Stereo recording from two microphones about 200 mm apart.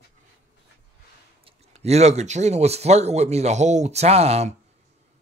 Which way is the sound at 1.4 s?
30° right (ahead or behind).